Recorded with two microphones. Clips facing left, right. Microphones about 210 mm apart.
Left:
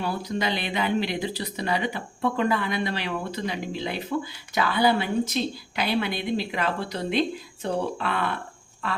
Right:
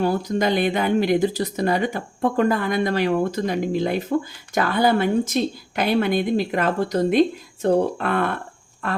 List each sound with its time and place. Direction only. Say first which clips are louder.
0.0 s speech: right 7 dB; 45° right (ahead or behind)